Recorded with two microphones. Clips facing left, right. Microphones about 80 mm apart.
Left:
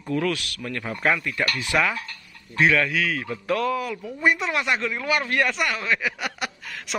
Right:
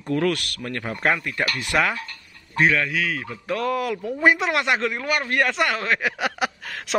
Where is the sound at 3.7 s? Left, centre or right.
Right.